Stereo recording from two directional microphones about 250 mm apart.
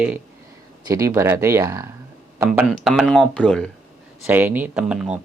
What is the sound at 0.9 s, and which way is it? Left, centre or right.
Speech, centre.